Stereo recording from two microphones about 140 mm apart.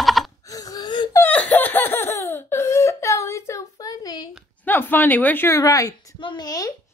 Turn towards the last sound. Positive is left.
turn(degrees=25)  # may be behind; listen again after turning